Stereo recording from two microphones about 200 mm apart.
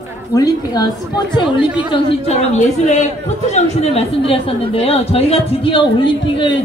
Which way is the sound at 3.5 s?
30° left (ahead or behind).